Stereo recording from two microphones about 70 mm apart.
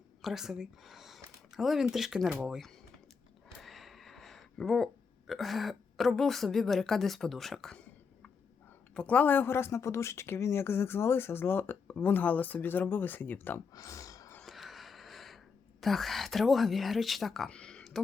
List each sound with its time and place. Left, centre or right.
0.2 s speech: centre
9.0 s a woman's voice: centre
13.7 s speech: left
14.4 s wheeze: centre
15.8 s speech: centre
17.5 s a sound: centre